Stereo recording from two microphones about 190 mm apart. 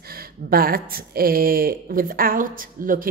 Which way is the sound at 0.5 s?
50° right (ahead or behind).